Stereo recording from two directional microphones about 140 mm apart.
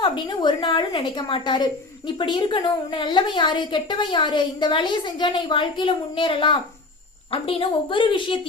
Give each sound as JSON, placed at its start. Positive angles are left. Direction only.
{"t": 0.0, "sound": "a woman's voice", "side_deg": 35}